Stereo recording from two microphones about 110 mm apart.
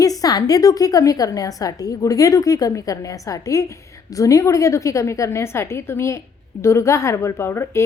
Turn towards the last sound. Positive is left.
turn(degrees=25)  # may be behind; listen again after turning